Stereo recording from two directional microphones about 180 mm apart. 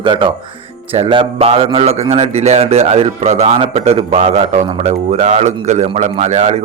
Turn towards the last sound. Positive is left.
turn(degrees=-40)  # may be behind; listen again after turning